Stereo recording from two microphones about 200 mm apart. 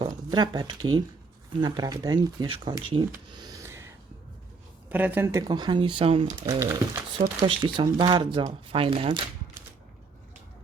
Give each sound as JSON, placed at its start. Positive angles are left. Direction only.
{"t": 0.0, "sound": "speech", "side_deg": -20}
{"t": 3.1, "sound": "a sound", "side_deg": -20}
{"t": 4.9, "sound": "speech", "side_deg": -10}